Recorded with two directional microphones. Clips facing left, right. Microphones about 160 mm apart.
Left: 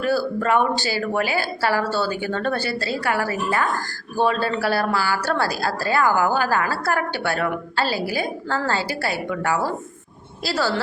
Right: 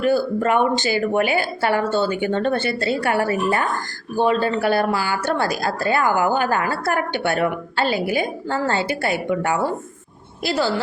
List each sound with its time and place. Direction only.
0.0 s a woman's voice: 20° right (ahead or behind)